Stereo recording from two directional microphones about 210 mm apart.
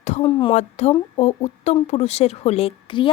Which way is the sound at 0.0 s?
30° left (ahead or behind).